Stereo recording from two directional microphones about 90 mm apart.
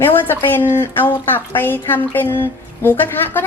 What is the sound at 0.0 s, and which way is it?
Speech, 25° left (ahead or behind).